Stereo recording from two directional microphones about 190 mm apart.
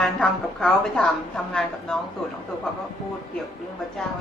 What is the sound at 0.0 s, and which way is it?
A woman's voice, 5° left (ahead or behind).